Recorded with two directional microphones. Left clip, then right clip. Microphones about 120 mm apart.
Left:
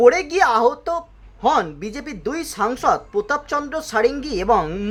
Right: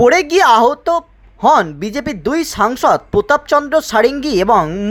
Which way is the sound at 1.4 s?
55° right (ahead or behind).